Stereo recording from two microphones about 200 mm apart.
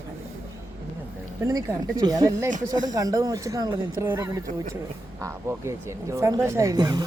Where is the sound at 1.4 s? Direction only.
15° right (ahead or behind).